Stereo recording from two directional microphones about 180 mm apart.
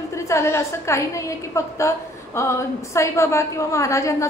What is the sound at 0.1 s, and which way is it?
A woman's voice, 15° left (ahead or behind).